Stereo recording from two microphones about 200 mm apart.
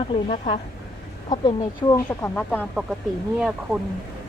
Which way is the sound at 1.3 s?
20° left (ahead or behind).